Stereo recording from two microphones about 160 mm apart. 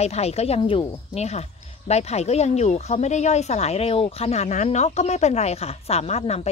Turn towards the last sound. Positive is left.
turn(degrees=40)  # may be behind; listen again after turning